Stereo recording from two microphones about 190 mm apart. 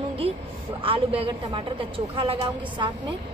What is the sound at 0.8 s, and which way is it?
A woman's voice, 30° right (ahead or behind).